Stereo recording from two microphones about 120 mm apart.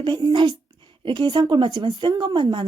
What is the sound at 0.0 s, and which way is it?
Speech, 40° right (ahead or behind).